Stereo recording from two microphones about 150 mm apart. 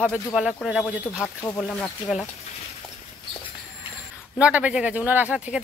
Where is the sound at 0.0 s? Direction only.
5° right (ahead or behind).